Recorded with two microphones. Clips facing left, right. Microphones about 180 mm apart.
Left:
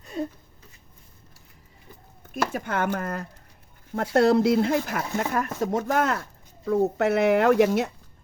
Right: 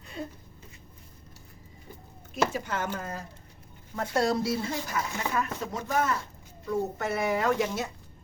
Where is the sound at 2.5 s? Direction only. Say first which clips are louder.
Left 5 dB; 60° left (ahead or behind).